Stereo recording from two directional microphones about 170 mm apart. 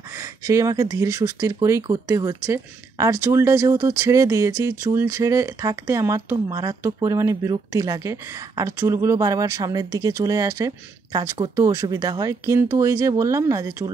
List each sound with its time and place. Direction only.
0.2 s speech: 20° right (ahead or behind)